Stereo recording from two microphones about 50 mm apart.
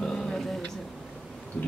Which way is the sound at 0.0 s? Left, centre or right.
Centre.